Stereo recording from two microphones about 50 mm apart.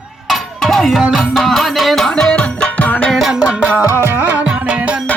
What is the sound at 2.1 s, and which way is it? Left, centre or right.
Music, centre.